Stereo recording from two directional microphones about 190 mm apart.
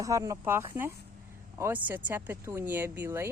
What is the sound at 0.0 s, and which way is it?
Speech, 15° right (ahead or behind).